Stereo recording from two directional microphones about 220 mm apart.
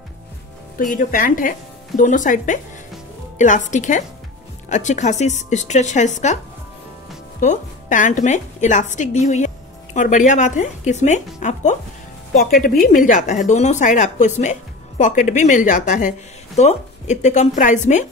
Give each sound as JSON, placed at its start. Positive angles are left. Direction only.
{"t": 0.7, "sound": "speech", "side_deg": 40}